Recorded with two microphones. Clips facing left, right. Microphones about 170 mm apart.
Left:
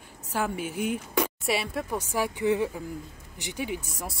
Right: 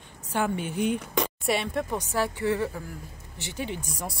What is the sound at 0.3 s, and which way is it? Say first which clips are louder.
A woman's voice: right 2 dB; 5° left (ahead or behind).